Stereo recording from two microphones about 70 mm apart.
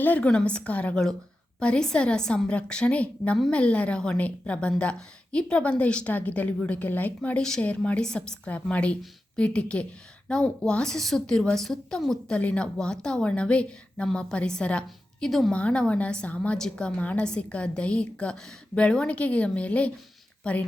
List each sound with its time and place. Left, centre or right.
0.0 s a woman's voice: left
7.2 s a woman's voice: centre
15.3 s speech: centre
15.5 s a woman's voice: centre